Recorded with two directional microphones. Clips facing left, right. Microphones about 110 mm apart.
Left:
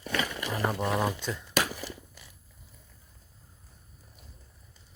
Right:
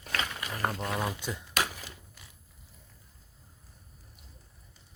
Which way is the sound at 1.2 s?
15° right (ahead or behind).